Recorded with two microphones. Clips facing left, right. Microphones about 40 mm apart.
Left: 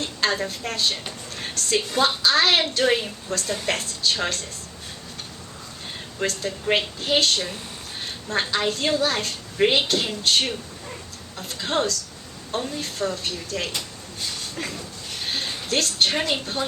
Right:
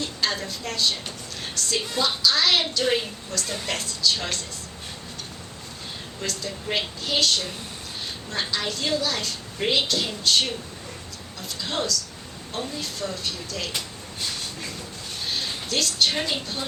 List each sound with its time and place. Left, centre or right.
0.0 s a woman's voice: left
6.1 s a woman's voice: left
15.3 s a sound: left